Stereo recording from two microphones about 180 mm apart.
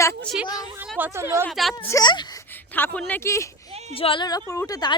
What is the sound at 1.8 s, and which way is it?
Speech, 20° left (ahead or behind).